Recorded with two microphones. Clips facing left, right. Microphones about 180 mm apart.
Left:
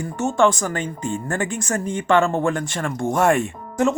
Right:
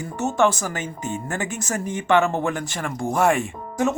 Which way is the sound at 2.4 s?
5° right (ahead or behind).